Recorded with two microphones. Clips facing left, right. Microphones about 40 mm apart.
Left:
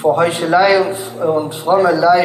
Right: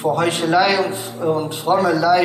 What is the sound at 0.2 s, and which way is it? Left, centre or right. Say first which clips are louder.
Speech: left 4 dB; centre.